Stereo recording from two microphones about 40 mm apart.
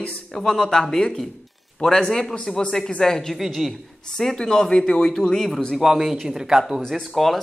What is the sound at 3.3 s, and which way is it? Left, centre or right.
Speech, centre.